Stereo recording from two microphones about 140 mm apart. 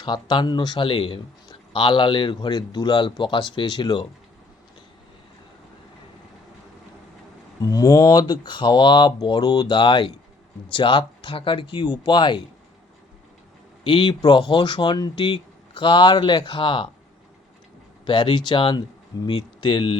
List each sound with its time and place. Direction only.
0.0 s a man's voice: 35° left (ahead or behind)
7.6 s a man's voice: 25° left (ahead or behind)
13.8 s a man's voice: 35° left (ahead or behind)
18.0 s a man's voice: 35° left (ahead or behind)